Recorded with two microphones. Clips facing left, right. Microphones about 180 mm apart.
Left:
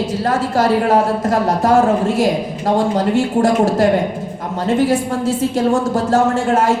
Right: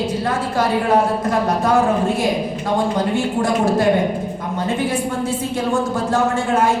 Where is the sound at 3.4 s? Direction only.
45° left (ahead or behind).